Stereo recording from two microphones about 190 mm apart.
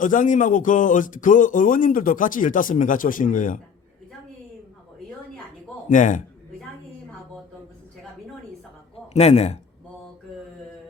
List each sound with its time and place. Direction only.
0.0 s speech: 45° left (ahead or behind)
5.9 s speech: 40° left (ahead or behind)
9.1 s a man's voice: 35° left (ahead or behind)